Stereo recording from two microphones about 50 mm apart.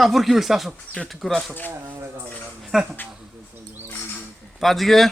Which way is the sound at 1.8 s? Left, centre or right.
Right.